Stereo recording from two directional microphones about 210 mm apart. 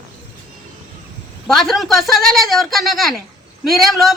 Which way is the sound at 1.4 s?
Centre (ahead or behind).